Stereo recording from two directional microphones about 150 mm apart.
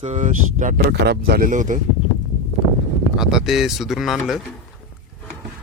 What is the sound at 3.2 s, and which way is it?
Speech, 5° right (ahead or behind).